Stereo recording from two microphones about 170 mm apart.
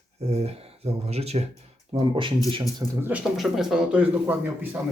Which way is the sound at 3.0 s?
10° right (ahead or behind).